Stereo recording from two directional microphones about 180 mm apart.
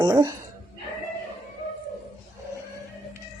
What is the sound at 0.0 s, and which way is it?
Speech, 20° right (ahead or behind).